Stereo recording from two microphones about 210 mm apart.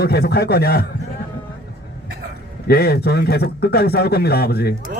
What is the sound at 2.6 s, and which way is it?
A man's voice, 50° left (ahead or behind).